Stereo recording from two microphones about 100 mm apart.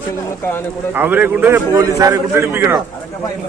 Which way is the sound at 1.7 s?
30° right (ahead or behind).